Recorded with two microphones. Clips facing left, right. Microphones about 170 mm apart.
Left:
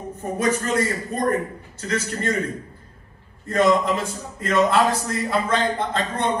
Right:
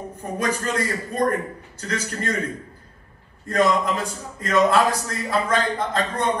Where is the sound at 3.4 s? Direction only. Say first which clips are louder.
Left 2 dB; 30° left (ahead or behind).